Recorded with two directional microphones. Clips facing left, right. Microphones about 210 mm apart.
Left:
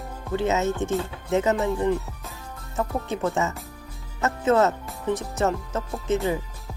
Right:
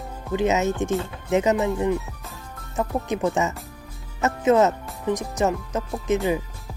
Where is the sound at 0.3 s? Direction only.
20° right (ahead or behind).